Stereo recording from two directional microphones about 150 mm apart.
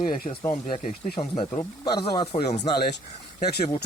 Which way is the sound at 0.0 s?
55° left (ahead or behind).